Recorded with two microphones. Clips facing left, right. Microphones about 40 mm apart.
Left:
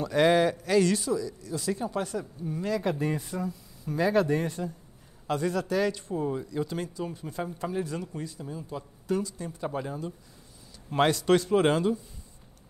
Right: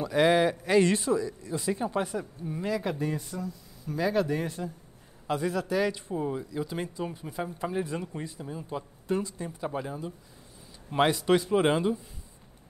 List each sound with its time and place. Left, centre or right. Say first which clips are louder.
0.0 s speech: left 1 dB; centre
0.7 s speech: right 1 dB; right; by 2.8 s centre
2.8 s speech: left 2 dB; centre
3.1 s speech: left 2 dB; centre
6.8 s speech: even; centre
9.6 s speech: left 1 dB; centre